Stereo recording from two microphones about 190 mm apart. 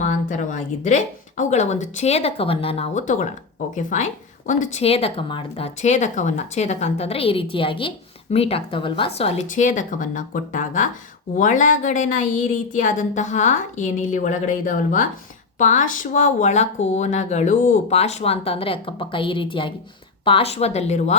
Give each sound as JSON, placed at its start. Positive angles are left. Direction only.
{"t": 0.0, "sound": "speech", "side_deg": 40}